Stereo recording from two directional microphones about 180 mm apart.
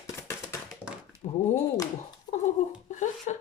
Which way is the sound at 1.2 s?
35° left (ahead or behind).